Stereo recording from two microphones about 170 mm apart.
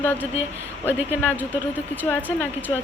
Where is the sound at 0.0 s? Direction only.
10° left (ahead or behind).